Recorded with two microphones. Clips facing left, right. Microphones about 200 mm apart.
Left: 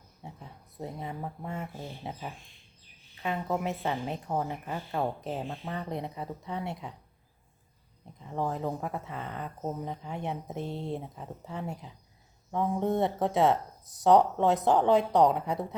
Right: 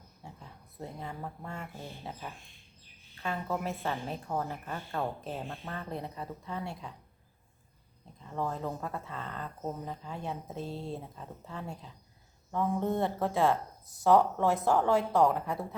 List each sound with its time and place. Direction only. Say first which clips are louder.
0.2 s a sound: left 3 dB; 20° left (ahead or behind)
2.0 s speech: left 4 dB; 20° left (ahead or behind)
3.2 s a woman's voice: left 3 dB; 15° left (ahead or behind)
8.2 s speech: left 3 dB; 15° left (ahead or behind)